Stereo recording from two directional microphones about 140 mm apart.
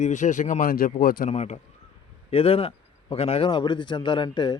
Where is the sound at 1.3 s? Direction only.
50° left (ahead or behind).